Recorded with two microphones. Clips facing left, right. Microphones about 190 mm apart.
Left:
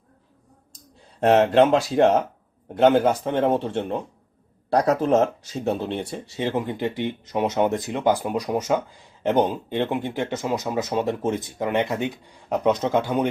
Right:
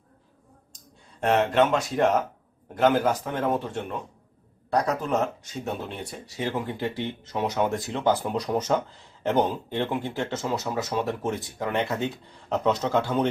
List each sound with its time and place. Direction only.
1.2 s a man's voice: 35° left (ahead or behind); by 13.2 s 15° left (ahead or behind)